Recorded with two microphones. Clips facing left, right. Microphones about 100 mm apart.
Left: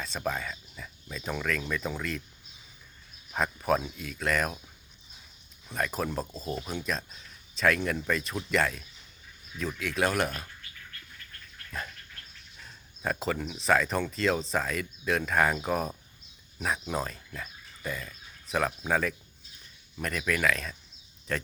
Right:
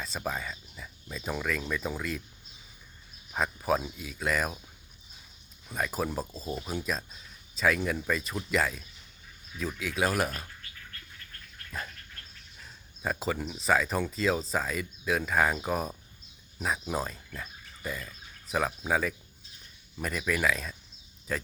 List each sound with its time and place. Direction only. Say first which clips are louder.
0.0 s speech: left 2 dB; 5° right (ahead or behind)
3.3 s speech: left 1 dB; centre (ahead or behind)
5.6 s speech: even; 5° right (ahead or behind)
11.7 s speech: left 1 dB; centre (ahead or behind)